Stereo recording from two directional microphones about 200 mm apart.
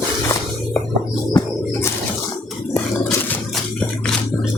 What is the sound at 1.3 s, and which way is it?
Bird, 15° left (ahead or behind).